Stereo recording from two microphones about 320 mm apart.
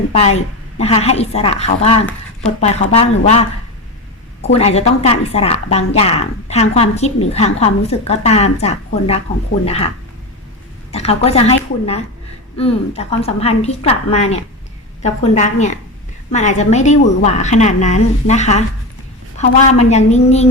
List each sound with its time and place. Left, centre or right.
0.3 s a woman's voice: centre
4.4 s a woman's voice: centre
10.9 s a woman's voice: centre